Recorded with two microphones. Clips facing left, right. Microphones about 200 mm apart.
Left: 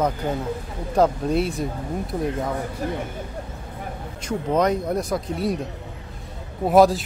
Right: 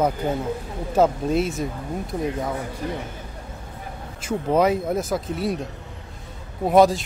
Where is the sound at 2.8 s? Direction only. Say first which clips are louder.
Left 2 dB; 45° left (ahead or behind).